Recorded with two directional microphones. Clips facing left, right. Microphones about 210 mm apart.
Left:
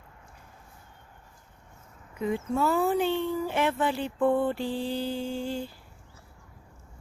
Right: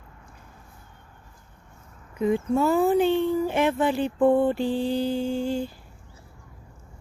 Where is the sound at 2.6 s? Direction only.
15° right (ahead or behind).